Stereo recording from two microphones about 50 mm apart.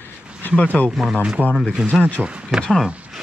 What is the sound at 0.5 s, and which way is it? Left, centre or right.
Speech, left.